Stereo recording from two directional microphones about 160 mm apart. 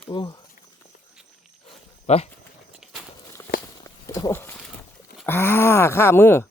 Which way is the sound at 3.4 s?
20° left (ahead or behind).